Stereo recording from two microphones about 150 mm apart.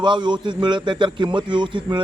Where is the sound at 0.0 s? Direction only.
30° right (ahead or behind).